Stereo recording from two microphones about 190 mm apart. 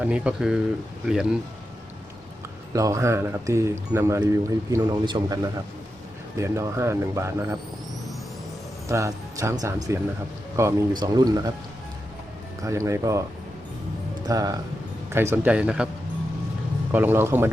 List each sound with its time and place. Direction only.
0.0 s speech: 5° right (ahead or behind)
2.7 s speech: 15° right (ahead or behind)
8.9 s speech: 15° right (ahead or behind)
12.6 s speech: 15° right (ahead or behind)
14.3 s speech: 20° right (ahead or behind)
16.9 s speech: 10° right (ahead or behind)